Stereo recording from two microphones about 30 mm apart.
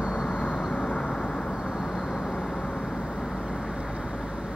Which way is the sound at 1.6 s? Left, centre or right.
Centre.